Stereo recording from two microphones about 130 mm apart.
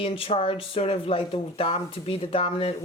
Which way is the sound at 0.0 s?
45° left (ahead or behind).